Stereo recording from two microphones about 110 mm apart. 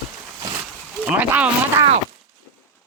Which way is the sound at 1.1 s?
15° right (ahead or behind).